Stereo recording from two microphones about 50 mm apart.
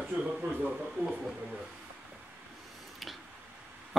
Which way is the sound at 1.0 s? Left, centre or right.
Right.